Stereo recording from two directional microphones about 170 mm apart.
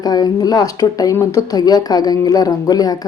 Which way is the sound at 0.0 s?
20° left (ahead or behind).